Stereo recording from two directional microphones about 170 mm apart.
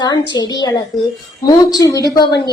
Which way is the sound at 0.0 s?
25° left (ahead or behind).